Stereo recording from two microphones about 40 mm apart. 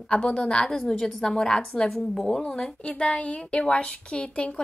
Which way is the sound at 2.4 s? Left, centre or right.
Centre.